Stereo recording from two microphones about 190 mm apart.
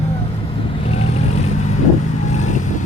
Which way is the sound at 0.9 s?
35° left (ahead or behind).